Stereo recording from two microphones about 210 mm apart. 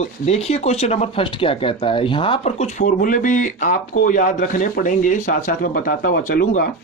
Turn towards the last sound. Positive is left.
turn(degrees=45)  # may be behind; listen again after turning